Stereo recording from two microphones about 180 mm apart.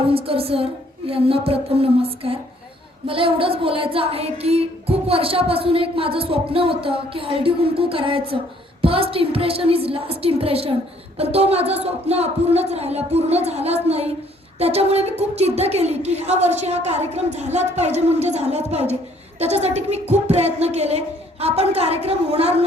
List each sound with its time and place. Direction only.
0.1 s speech: 30° right (ahead or behind)